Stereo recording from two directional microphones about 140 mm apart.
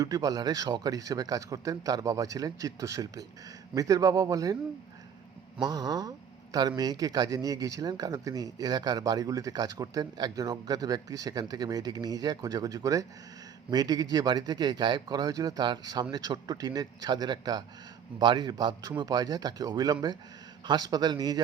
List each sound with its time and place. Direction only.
0.0 s a man's voice: 25° right (ahead or behind)
5.5 s a man's voice: 30° right (ahead or behind)